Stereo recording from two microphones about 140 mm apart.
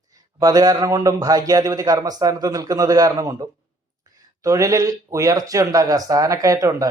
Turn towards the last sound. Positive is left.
turn(degrees=-25)  # may be behind; listen again after turning